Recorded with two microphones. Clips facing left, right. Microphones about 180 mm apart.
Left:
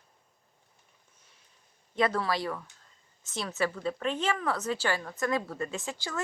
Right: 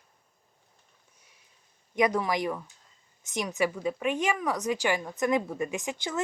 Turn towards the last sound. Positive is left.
turn(degrees=-20)  # may be behind; listen again after turning